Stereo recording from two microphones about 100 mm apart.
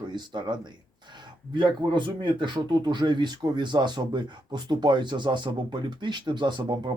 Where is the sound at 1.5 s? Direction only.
50° right (ahead or behind).